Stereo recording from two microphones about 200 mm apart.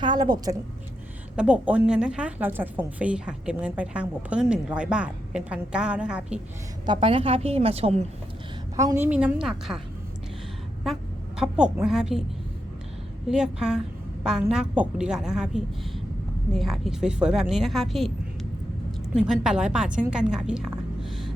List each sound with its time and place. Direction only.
0.0 s a woman's voice: 20° right (ahead or behind)
1.4 s a woman's voice: 5° right (ahead or behind)
6.8 s a woman's voice: 25° right (ahead or behind)
8.7 s a woman's voice: 15° right (ahead or behind)
11.3 s a woman's voice: 5° right (ahead or behind)
13.2 s a woman's voice: 5° right (ahead or behind)
21.0 s a sound: centre (ahead or behind)